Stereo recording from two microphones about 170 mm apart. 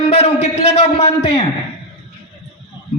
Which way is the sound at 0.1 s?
40° left (ahead or behind).